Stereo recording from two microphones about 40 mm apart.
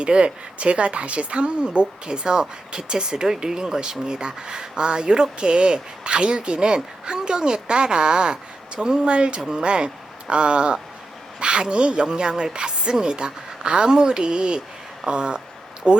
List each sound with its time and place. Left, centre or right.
0.0 s speech: right